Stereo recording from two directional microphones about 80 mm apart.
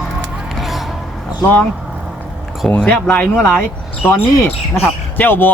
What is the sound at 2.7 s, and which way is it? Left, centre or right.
Speech, centre.